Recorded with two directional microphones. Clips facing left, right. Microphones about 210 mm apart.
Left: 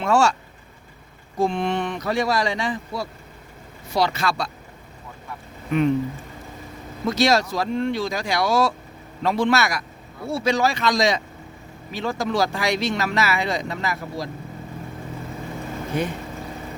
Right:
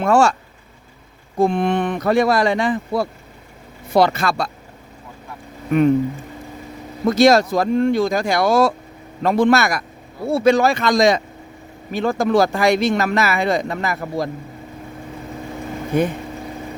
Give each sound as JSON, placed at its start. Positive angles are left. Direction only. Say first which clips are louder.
{"t": 0.0, "sound": "speech", "louder": "right 4 dB", "side_deg": -55}
{"t": 1.4, "sound": "speech", "louder": "right 5 dB", "side_deg": -55}
{"t": 7.0, "sound": "speech", "louder": "right 7 dB", "side_deg": -50}
{"t": 15.9, "sound": "speech", "louder": "right 7 dB", "side_deg": -50}